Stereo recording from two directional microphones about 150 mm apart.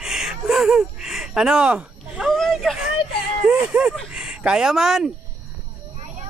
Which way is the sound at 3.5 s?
10° right (ahead or behind).